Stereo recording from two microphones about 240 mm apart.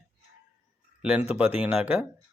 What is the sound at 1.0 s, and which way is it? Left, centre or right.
Speech, centre.